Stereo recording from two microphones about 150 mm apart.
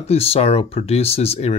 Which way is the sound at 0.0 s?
40° left (ahead or behind).